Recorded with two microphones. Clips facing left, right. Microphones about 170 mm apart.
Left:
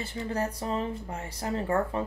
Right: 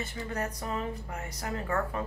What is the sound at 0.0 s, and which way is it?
Speech, 30° left (ahead or behind).